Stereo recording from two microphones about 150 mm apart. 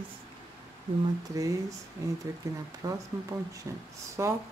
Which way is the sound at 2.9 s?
20° right (ahead or behind).